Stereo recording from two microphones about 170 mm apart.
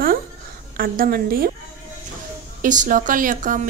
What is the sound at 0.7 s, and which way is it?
Speech, 55° right (ahead or behind).